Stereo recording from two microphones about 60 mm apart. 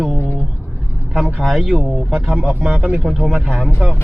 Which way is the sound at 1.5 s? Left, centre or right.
Centre.